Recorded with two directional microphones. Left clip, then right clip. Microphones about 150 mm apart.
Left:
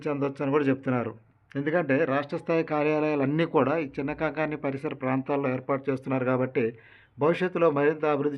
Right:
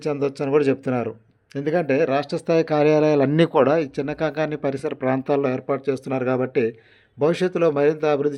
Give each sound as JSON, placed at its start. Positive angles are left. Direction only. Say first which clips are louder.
{"t": 0.0, "sound": "speech", "louder": "right 5 dB", "side_deg": -30}
{"t": 3.9, "sound": "speech", "louder": "right 5 dB", "side_deg": -35}